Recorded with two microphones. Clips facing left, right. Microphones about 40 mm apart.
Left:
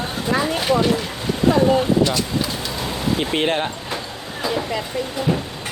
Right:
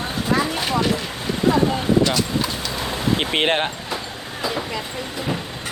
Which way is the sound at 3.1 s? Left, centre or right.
Right.